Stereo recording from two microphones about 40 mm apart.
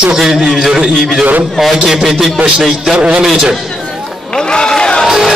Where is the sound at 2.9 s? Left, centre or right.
Right.